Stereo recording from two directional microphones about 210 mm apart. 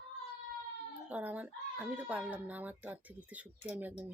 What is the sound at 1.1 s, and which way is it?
Speech, 5° right (ahead or behind).